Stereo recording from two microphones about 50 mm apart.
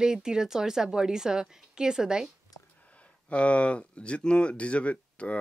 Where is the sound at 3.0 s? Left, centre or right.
Left.